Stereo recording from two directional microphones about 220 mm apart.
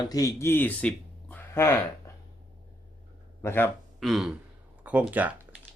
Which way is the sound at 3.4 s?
10° left (ahead or behind).